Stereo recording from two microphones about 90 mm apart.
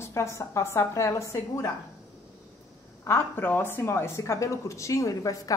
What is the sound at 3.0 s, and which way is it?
A woman's voice, 25° left (ahead or behind).